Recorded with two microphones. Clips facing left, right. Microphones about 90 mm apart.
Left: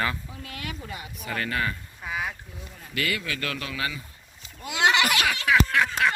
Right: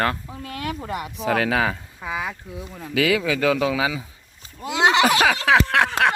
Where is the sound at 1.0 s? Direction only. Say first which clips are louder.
Right 11 dB; 75° right (ahead or behind).